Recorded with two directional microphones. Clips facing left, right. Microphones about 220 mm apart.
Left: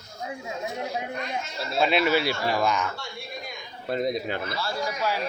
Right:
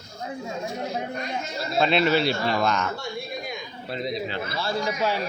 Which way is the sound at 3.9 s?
50° left (ahead or behind).